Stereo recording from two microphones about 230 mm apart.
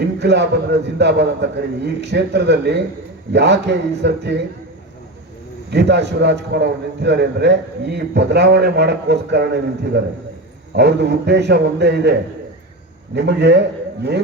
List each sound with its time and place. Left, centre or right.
0.2 s a man's voice: right
5.7 s a man's voice: right
13.1 s a man's voice: right